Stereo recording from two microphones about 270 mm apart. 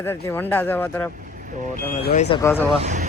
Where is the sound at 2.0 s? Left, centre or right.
Left.